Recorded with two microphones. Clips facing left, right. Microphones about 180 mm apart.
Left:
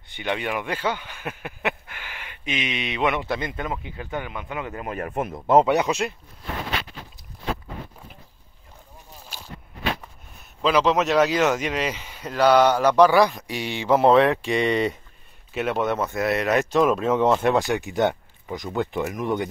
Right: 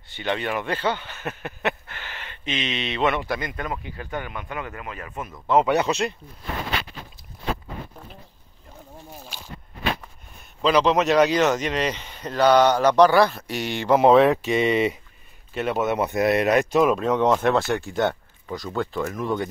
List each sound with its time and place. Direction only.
0.1 s speech: 15° left (ahead or behind)
3.9 s speech: 15° left (ahead or behind)
4.8 s speech: 50° left (ahead or behind)
5.7 s speech: 15° left (ahead or behind)
10.6 s speech: 5° left (ahead or behind)
16.0 s speech: 20° right (ahead or behind)
16.8 s speech: centre (ahead or behind)
17.5 s speech: 15° left (ahead or behind)